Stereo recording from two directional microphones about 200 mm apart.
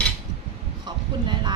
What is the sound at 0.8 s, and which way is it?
Speech, 20° right (ahead or behind).